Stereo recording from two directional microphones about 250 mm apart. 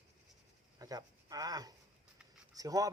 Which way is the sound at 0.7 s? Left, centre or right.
Centre.